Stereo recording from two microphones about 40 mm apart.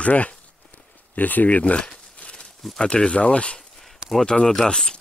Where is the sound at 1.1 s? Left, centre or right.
Left.